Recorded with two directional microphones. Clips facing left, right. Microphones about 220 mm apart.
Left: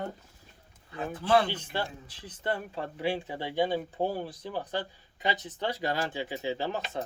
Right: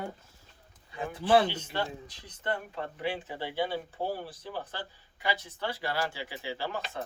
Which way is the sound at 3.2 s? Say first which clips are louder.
Left 3 dB; 15° left (ahead or behind).